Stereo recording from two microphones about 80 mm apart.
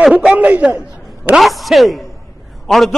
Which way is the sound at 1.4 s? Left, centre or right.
Centre.